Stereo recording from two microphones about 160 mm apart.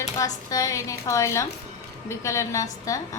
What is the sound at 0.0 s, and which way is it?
A woman's voice, 20° left (ahead or behind).